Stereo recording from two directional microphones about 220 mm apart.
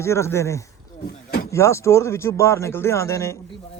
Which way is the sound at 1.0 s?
45° left (ahead or behind).